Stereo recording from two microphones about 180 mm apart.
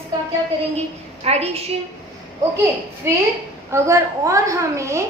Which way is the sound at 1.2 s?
35° right (ahead or behind).